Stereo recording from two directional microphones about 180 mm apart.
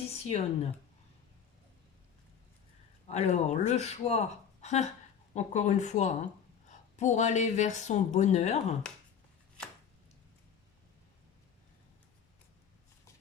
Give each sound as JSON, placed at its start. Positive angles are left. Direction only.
{"t": 0.1, "sound": "speech", "side_deg": 35}
{"t": 3.1, "sound": "speech", "side_deg": 40}